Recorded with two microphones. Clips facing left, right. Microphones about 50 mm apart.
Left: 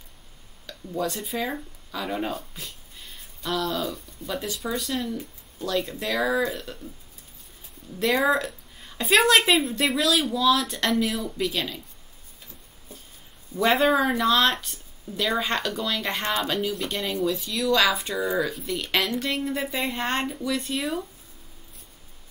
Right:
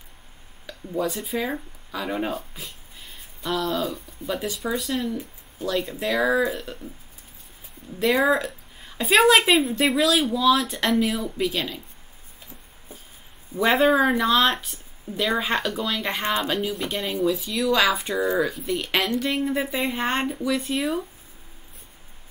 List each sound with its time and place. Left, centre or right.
0.7 s speech: centre
8.0 s a woman's voice: centre
13.6 s a woman's voice: centre